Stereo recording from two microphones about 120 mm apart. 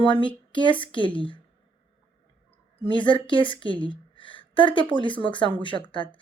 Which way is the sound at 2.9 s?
40° left (ahead or behind).